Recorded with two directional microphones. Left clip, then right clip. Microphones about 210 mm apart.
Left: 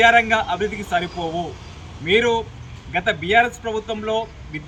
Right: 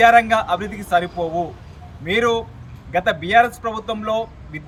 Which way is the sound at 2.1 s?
20° right (ahead or behind).